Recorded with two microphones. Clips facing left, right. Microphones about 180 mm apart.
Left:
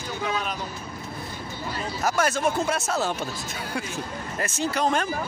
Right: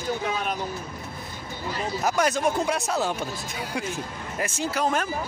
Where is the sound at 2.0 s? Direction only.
15° right (ahead or behind).